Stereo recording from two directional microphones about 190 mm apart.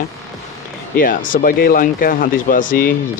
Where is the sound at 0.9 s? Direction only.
45° left (ahead or behind).